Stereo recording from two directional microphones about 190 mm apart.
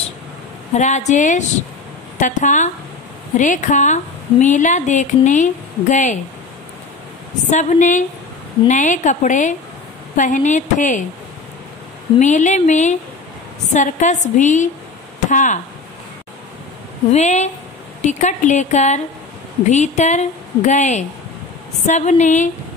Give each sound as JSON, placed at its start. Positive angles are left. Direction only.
{"t": 0.7, "sound": "a woman's voice", "side_deg": 40}
{"t": 7.4, "sound": "a woman's voice", "side_deg": 40}
{"t": 12.2, "sound": "a woman's voice", "side_deg": 40}
{"t": 17.1, "sound": "a woman's voice", "side_deg": 40}